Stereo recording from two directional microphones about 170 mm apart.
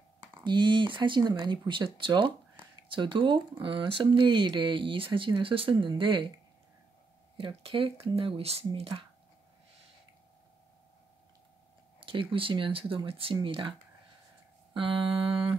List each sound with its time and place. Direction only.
0.2 s speech: 25° right (ahead or behind)
7.3 s speech: 30° right (ahead or behind)
12.0 s speech: 30° right (ahead or behind)